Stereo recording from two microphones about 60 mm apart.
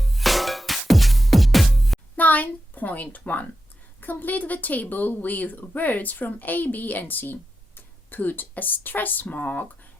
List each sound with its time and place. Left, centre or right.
0.0 s music: centre
2.1 s a woman's voice: left